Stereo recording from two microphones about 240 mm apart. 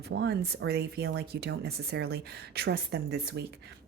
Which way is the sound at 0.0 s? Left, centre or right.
Right.